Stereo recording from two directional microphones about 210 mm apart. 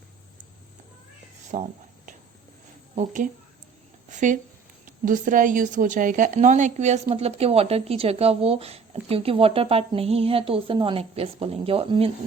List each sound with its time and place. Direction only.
1.5 s speech: 35° right (ahead or behind)
2.9 s speech: 35° right (ahead or behind)